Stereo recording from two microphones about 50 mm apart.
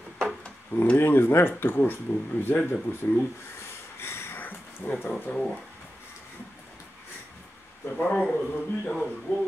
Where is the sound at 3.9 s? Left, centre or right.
Left.